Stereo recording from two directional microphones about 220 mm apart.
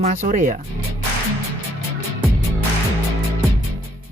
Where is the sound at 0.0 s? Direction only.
35° right (ahead or behind).